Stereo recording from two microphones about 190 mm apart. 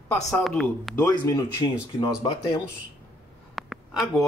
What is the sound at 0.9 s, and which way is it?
Speech, 15° left (ahead or behind).